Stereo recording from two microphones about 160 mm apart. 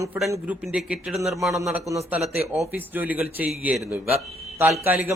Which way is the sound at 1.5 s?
20° right (ahead or behind).